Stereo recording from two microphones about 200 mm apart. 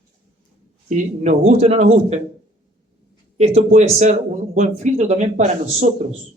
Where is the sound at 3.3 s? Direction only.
30° right (ahead or behind).